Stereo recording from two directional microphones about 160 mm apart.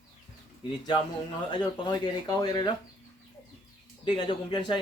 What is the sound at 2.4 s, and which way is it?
Speech, 25° left (ahead or behind).